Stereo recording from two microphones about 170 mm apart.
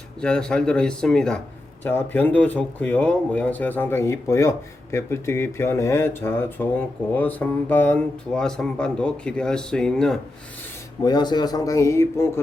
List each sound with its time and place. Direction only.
0.2 s speech: 5° left (ahead or behind)
11.0 s a man's voice: 25° left (ahead or behind)